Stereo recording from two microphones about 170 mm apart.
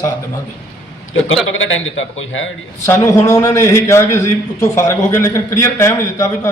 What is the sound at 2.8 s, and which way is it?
A man's voice, 15° left (ahead or behind).